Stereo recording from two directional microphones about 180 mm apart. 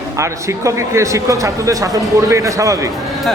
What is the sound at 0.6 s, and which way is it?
A man's voice, 15° right (ahead or behind).